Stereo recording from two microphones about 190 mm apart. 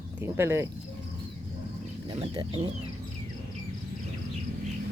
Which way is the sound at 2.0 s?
25° right (ahead or behind).